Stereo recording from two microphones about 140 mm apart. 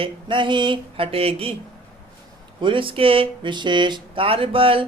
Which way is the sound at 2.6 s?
40° right (ahead or behind).